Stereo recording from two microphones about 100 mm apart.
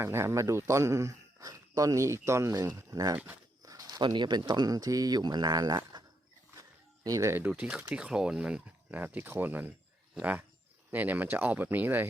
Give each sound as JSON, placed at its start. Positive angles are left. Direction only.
{"t": 0.0, "sound": "speech", "side_deg": -25}